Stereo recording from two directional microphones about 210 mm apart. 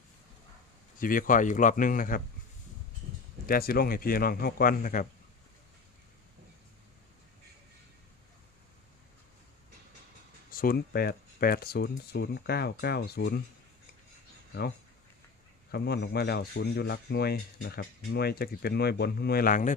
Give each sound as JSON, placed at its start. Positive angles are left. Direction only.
{"t": 0.9, "sound": "speech", "side_deg": 40}
{"t": 3.4, "sound": "speech", "side_deg": 45}
{"t": 10.5, "sound": "speech", "side_deg": 45}
{"t": 15.7, "sound": "speech", "side_deg": 50}